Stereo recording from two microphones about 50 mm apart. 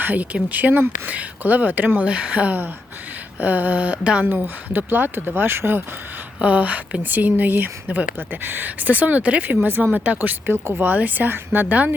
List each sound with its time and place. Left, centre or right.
0.0 s speech: right
4.3 s speech: right
6.4 s speech: right
9.8 s speech: right
10.2 s speech: right
10.8 s speech: right